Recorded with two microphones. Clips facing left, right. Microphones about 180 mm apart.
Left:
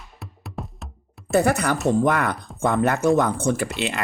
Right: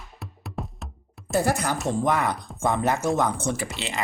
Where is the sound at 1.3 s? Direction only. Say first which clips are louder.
Left 4 dB; 65° left (ahead or behind).